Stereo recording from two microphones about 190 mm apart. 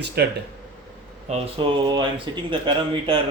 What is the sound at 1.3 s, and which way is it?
Speech, 25° right (ahead or behind).